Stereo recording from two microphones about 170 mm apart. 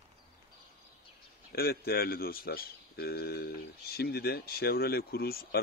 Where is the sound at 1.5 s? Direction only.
65° left (ahead or behind).